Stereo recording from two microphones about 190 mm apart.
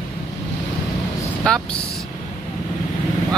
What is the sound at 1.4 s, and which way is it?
Speech, 5° left (ahead or behind).